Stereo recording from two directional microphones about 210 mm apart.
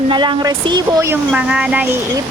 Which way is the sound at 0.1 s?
20° right (ahead or behind).